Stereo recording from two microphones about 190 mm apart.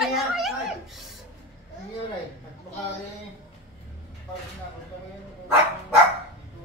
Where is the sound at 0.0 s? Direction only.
Centre (ahead or behind).